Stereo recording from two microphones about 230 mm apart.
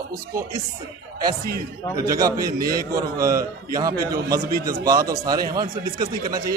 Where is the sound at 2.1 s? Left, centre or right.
Centre.